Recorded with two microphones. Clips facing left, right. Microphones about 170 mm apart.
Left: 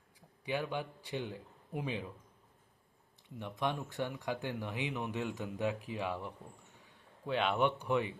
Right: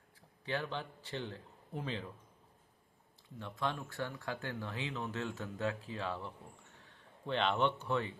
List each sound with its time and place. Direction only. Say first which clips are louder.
0.4 s speech: left 2 dB; 10° left (ahead or behind)
3.2 s speech: left 2 dB; 20° left (ahead or behind)